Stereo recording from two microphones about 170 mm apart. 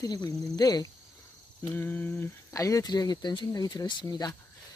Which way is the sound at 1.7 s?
10° left (ahead or behind).